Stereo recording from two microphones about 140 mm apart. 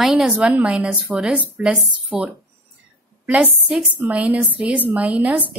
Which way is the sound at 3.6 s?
5° right (ahead or behind).